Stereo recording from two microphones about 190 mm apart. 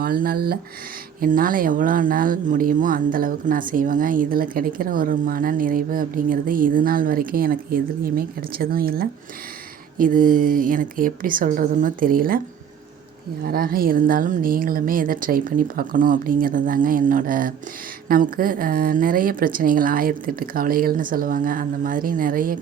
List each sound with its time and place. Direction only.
0.0 s speech: 50° right (ahead or behind)
13.4 s speech: 50° right (ahead or behind)